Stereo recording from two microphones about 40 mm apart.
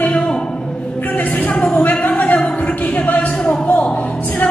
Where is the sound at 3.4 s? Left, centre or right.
Left.